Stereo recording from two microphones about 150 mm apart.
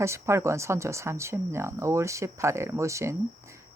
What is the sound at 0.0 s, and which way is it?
Speech, 20° right (ahead or behind).